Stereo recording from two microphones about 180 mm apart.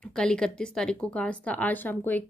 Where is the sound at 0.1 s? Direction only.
5° left (ahead or behind).